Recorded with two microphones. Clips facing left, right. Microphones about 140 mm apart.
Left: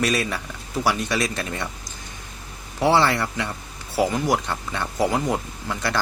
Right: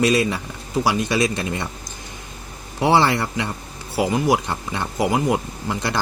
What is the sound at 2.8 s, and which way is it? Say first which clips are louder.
Speech: right 2 dB; 20° right (ahead or behind).